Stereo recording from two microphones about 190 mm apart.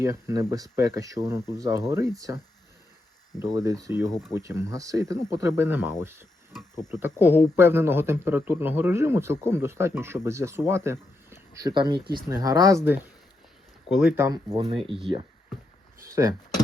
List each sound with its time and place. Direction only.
0.0 s a man's voice: 15° right (ahead or behind)
3.4 s a man's voice: 15° right (ahead or behind)
11.7 s speech: 25° right (ahead or behind); by 14.3 s 5° right (ahead or behind)
14.5 s speech: 30° right (ahead or behind)